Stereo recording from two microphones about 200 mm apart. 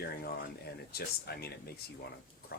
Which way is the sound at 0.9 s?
50° left (ahead or behind).